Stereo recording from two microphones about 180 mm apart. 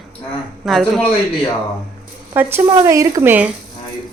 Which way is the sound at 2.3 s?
10° right (ahead or behind).